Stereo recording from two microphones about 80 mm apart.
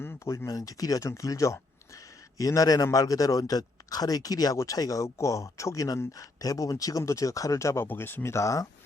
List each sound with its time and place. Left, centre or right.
0.0 s a sound: left
0.3 s speech: left
7.9 s speech: left